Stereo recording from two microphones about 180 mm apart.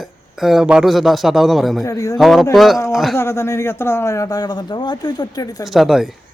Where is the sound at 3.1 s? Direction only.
15° left (ahead or behind).